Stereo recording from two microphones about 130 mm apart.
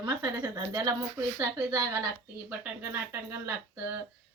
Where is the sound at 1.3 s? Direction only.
25° right (ahead or behind).